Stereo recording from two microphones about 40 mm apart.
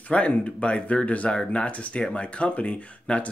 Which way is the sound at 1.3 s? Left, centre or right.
Left.